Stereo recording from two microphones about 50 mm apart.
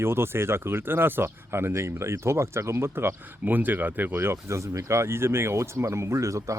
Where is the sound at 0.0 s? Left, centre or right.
Right.